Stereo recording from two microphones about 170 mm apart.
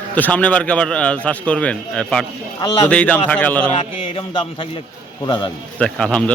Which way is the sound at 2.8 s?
5° left (ahead or behind).